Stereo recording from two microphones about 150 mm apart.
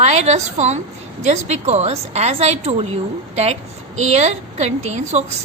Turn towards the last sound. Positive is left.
turn(degrees=-50)  # may be behind; listen again after turning